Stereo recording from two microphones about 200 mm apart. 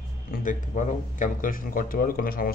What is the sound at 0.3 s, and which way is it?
Speech, 40° left (ahead or behind).